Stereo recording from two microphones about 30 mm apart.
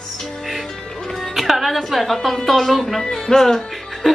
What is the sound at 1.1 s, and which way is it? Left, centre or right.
Music, centre.